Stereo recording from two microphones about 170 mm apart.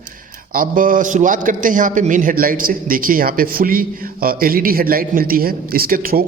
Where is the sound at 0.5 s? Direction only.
55° right (ahead or behind).